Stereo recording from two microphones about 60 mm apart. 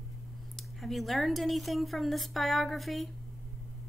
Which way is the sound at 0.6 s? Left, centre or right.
Centre.